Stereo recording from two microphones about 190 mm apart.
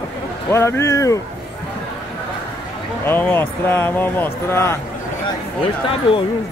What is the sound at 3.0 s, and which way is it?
Speech, 10° left (ahead or behind).